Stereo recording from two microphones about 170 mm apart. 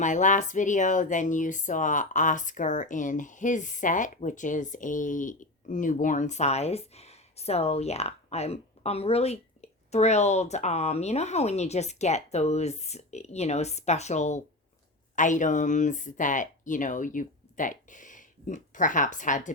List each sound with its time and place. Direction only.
0.0 s speech: 45° left (ahead or behind)